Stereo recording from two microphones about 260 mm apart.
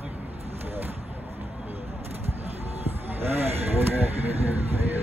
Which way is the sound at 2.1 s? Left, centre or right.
Right.